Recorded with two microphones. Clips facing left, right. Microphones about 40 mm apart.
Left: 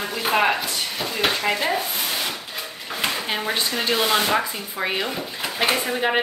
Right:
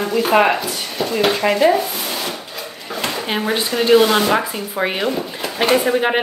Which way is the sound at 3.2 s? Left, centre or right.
Centre.